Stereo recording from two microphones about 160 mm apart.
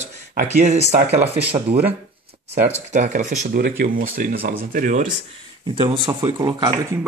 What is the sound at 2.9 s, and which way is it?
Speech, 50° right (ahead or behind).